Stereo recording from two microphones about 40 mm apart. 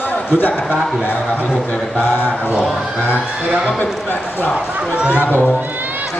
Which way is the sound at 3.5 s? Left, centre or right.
Centre.